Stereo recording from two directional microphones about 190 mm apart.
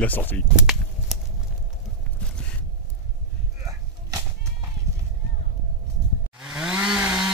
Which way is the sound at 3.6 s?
20° right (ahead or behind).